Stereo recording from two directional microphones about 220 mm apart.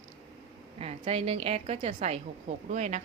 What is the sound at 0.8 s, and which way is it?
A woman's voice, 30° right (ahead or behind).